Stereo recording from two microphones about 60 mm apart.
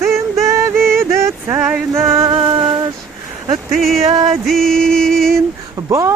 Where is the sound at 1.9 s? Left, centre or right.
Right.